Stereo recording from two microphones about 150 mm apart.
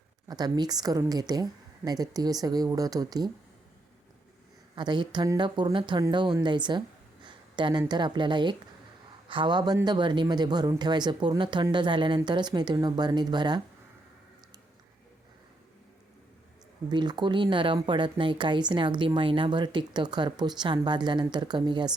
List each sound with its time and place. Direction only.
0.3 s speech: 25° right (ahead or behind)
4.7 s speech: 30° right (ahead or behind)
16.9 s speech: 30° right (ahead or behind)